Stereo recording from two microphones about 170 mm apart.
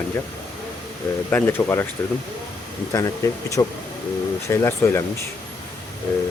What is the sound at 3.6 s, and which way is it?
Speech, 20° left (ahead or behind).